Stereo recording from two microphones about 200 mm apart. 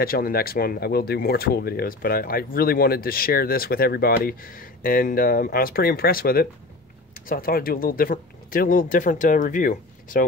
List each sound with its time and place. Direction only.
0.0 s speech: 50° left (ahead or behind)